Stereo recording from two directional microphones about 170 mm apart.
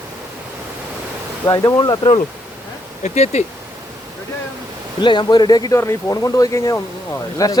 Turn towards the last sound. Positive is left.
turn(degrees=20)  # may be behind; listen again after turning